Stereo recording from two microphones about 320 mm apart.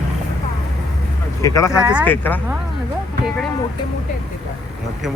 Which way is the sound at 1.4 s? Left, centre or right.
Centre.